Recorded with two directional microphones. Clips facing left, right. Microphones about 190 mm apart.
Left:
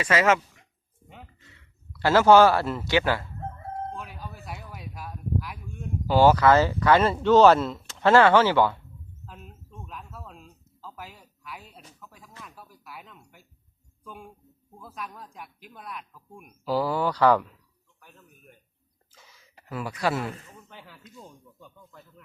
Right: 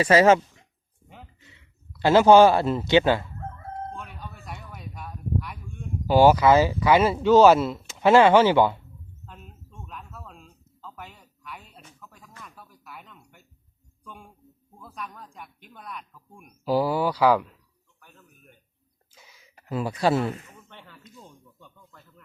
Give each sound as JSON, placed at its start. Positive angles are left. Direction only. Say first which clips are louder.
{"t": 0.0, "sound": "speech", "louder": "right 5 dB", "side_deg": -35}
{"t": 1.4, "sound": "speech", "louder": "right 1 dB", "side_deg": -20}
{"t": 3.9, "sound": "a sound", "louder": "left 1 dB", "side_deg": 5}
{"t": 6.1, "sound": "speech", "louder": "right 2 dB", "side_deg": -15}
{"t": 9.2, "sound": "a sound", "louder": "left 1 dB", "side_deg": 0}
{"t": 11.9, "sound": "music", "louder": "even", "side_deg": 0}
{"t": 12.4, "sound": "a man's voice", "louder": "left 1 dB", "side_deg": 0}
{"t": 16.6, "sound": "speech", "louder": "right 2 dB", "side_deg": -15}
{"t": 18.0, "sound": "a sound", "louder": "left 1 dB", "side_deg": 0}
{"t": 19.6, "sound": "speech", "louder": "right 4 dB", "side_deg": -25}
{"t": 20.7, "sound": "speech", "louder": "left 1 dB", "side_deg": 5}